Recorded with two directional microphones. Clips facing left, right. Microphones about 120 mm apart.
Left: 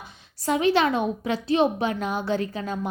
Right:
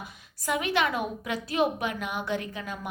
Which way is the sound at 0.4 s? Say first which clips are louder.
Left 6 dB; 30° left (ahead or behind).